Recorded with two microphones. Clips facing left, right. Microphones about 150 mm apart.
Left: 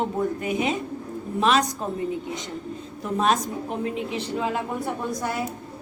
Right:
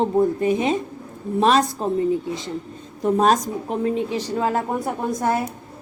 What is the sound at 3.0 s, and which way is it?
A woman's voice, 40° right (ahead or behind).